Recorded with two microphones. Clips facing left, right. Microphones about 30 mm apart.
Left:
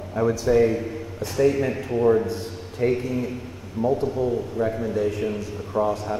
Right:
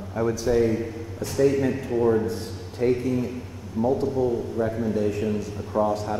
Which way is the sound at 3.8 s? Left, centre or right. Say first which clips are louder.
Even; centre.